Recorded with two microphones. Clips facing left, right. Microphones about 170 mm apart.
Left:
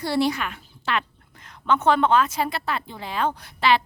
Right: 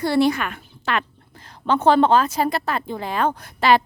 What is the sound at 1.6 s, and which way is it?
Speech, 35° right (ahead or behind).